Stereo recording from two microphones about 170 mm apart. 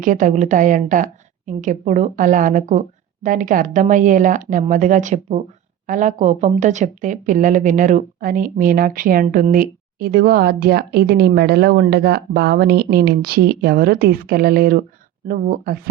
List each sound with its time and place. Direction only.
0.0 s a woman's voice: 50° right (ahead or behind)